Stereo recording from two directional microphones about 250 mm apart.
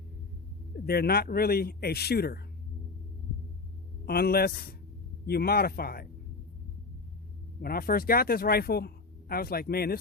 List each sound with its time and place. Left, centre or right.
0.9 s speech: left
4.0 s speech: left
7.6 s speech: left